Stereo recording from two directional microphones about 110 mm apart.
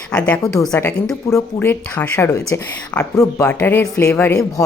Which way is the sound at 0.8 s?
25° left (ahead or behind).